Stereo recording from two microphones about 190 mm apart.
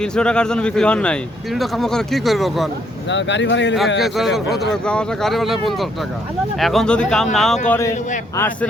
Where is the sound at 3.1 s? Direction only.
70° left (ahead or behind).